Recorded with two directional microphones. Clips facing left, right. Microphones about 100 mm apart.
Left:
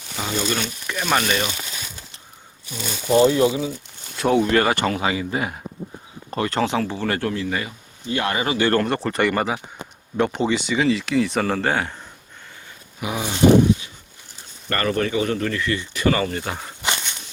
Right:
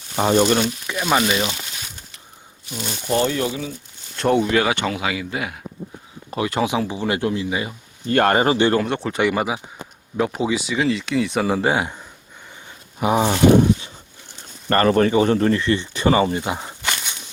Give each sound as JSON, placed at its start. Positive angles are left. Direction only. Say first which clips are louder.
{"t": 0.2, "sound": "speech", "louder": "right 9 dB", "side_deg": -40}
{"t": 0.9, "sound": "speech", "louder": "left 1 dB", "side_deg": -10}
{"t": 3.1, "sound": "speech", "louder": "left 5 dB", "side_deg": 20}
{"t": 4.2, "sound": "speech", "louder": "even", "side_deg": 0}
{"t": 6.3, "sound": "speech", "louder": "right 1 dB", "side_deg": -10}
{"t": 8.0, "sound": "speech", "louder": "right 7 dB", "side_deg": -50}
{"t": 8.7, "sound": "speech", "louder": "even", "side_deg": 0}
{"t": 13.0, "sound": "a sound", "louder": "right 9 dB", "side_deg": -35}
{"t": 13.3, "sound": "speech", "louder": "left 2 dB", "side_deg": -30}